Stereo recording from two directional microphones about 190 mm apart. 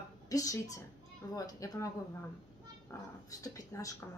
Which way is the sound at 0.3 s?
20° left (ahead or behind).